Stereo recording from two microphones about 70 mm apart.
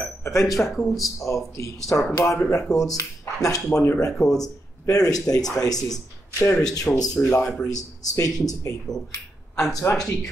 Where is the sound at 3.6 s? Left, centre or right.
Left.